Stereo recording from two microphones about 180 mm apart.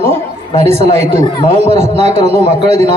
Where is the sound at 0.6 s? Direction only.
35° right (ahead or behind).